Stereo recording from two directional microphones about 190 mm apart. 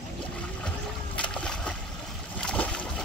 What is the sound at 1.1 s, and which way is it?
Boat, 5° left (ahead or behind).